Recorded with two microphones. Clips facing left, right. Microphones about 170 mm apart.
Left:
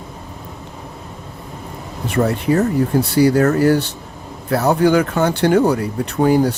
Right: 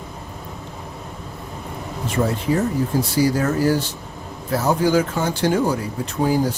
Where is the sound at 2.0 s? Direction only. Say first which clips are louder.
Left 4 dB; 65° left (ahead or behind).